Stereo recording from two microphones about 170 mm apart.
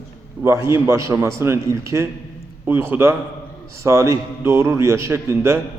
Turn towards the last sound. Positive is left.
turn(degrees=-15)  # may be behind; listen again after turning